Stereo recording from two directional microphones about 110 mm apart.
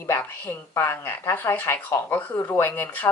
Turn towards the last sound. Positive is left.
turn(degrees=15)  # may be behind; listen again after turning